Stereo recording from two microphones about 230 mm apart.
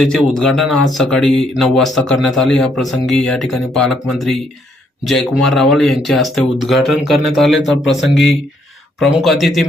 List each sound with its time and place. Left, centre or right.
0.0 s speech: centre